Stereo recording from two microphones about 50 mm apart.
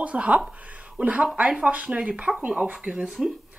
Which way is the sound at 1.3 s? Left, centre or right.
Right.